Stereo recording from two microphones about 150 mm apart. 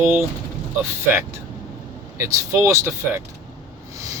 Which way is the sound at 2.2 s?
20° right (ahead or behind).